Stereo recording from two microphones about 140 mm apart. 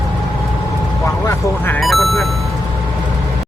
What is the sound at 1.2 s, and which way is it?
Speech, 20° left (ahead or behind).